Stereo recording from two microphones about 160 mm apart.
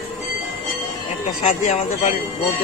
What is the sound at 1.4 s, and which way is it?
Speech, 40° left (ahead or behind).